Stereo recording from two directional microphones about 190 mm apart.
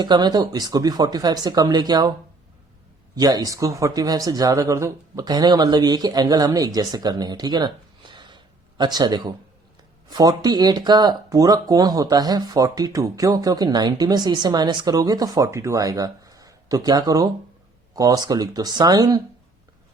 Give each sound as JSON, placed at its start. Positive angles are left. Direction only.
{"t": 0.0, "sound": "speech", "side_deg": -20}
{"t": 3.2, "sound": "speech", "side_deg": -20}